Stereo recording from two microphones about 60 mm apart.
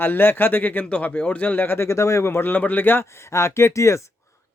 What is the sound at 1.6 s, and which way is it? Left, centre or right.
Speech, left.